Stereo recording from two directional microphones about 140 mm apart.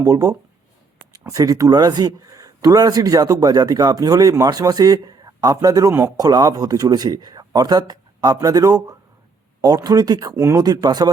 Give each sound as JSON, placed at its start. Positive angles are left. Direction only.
{"t": 0.0, "sound": "speech", "side_deg": -25}